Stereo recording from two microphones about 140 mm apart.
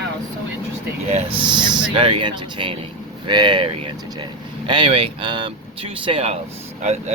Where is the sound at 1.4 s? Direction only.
35° right (ahead or behind).